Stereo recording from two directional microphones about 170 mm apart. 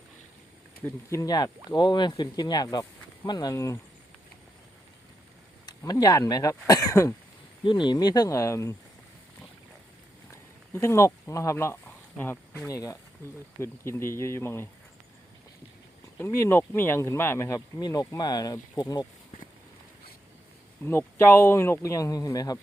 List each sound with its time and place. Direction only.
0.8 s speech: 20° left (ahead or behind)
5.6 s speech: 20° left (ahead or behind)
10.3 s speech: 15° left (ahead or behind)
16.1 s speech: 15° left (ahead or behind)
20.8 s speech: 15° left (ahead or behind)